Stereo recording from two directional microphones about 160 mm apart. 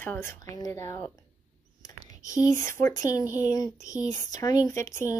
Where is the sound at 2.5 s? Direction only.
15° left (ahead or behind).